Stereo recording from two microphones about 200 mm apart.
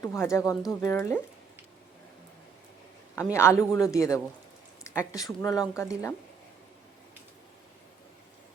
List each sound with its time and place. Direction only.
0.0 s speech: 15° left (ahead or behind)
3.3 s speech: 15° left (ahead or behind)